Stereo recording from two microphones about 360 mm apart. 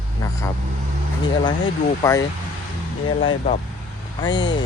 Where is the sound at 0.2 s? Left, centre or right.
Centre.